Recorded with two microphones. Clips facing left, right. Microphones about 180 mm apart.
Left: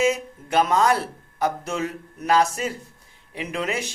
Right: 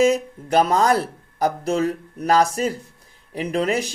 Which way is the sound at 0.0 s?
35° right (ahead or behind).